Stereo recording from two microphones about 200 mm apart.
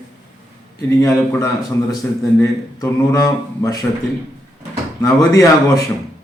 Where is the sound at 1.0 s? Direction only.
15° left (ahead or behind).